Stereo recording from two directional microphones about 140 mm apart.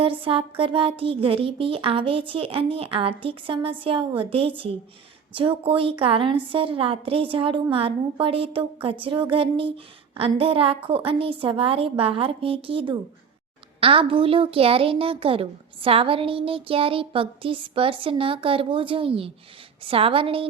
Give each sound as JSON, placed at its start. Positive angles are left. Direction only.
{"t": 0.0, "sound": "a woman's voice", "side_deg": -40}